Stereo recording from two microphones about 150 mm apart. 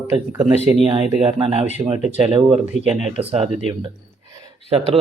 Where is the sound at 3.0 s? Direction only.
45° right (ahead or behind).